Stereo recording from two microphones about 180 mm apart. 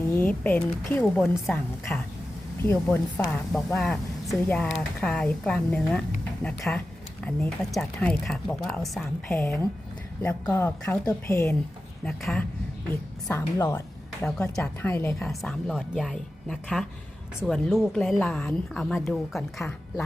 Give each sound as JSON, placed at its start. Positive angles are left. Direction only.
{"t": 0.2, "sound": "a woman's voice", "side_deg": 10}
{"t": 10.5, "sound": "speech", "side_deg": 10}
{"t": 12.0, "sound": "a woman's voice", "side_deg": 5}
{"t": 15.2, "sound": "a woman's voice", "side_deg": 0}